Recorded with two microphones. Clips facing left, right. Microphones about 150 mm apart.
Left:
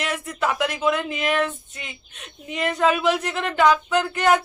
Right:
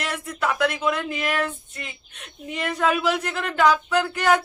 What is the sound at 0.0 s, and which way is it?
Speech, centre (ahead or behind).